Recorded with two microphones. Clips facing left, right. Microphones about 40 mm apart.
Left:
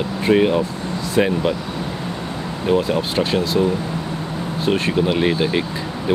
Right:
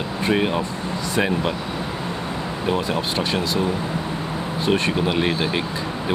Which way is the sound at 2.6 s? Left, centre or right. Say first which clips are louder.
Left 5 dB; centre.